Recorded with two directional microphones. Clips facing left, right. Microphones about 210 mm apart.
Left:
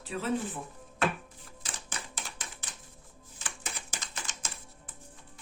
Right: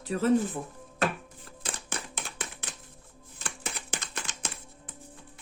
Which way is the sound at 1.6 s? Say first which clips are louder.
Right 5 dB; 60° right (ahead or behind).